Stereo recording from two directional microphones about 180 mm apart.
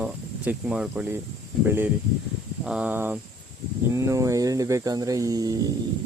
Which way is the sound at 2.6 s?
5° right (ahead or behind).